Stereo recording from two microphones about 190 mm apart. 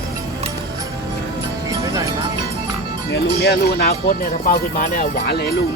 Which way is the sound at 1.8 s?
15° right (ahead or behind).